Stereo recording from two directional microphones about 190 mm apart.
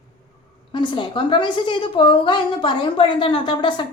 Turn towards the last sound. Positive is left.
turn(degrees=25)  # may be behind; listen again after turning